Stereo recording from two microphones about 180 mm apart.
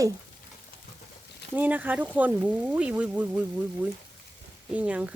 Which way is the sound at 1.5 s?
10° right (ahead or behind).